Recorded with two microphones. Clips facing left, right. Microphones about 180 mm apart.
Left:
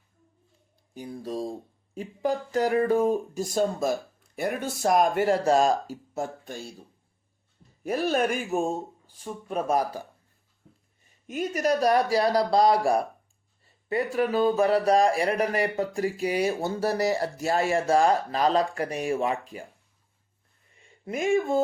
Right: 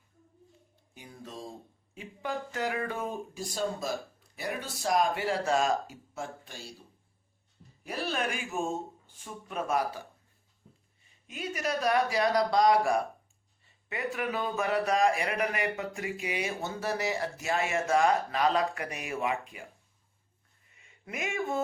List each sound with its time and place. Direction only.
0.9 s speech: 35° left (ahead or behind)
7.9 s speech: 45° left (ahead or behind)
11.3 s speech: 45° left (ahead or behind)
20.7 s speech: 30° left (ahead or behind)